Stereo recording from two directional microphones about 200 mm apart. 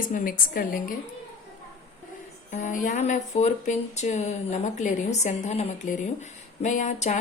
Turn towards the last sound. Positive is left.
turn(degrees=35)  # may be behind; listen again after turning